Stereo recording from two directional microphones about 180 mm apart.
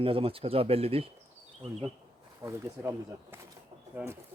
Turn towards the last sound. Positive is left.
turn(degrees=-10)  # may be behind; listen again after turning